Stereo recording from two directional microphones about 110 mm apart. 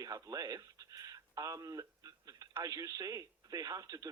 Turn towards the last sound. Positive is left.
turn(degrees=-30)  # may be behind; listen again after turning